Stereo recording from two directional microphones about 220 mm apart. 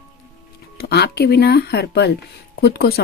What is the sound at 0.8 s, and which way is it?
Speech, 45° left (ahead or behind).